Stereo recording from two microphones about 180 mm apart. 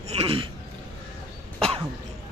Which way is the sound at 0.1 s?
30° right (ahead or behind).